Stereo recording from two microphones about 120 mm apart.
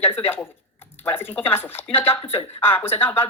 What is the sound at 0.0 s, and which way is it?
Speech, 15° left (ahead or behind).